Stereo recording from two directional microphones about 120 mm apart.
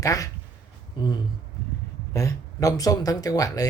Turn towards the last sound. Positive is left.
turn(degrees=30)  # may be behind; listen again after turning